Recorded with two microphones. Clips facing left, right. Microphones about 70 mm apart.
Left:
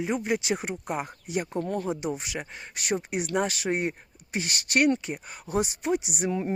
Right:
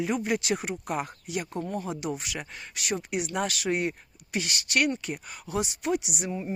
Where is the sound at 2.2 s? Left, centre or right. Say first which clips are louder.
Left 1 dB; left.